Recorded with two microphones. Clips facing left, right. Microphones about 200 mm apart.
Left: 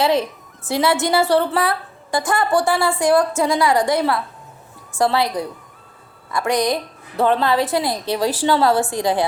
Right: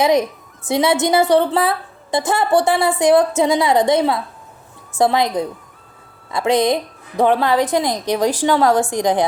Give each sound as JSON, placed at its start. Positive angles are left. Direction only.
{"t": 0.0, "sound": "a woman's voice", "side_deg": -15}
{"t": 6.3, "sound": "a woman's voice", "side_deg": -20}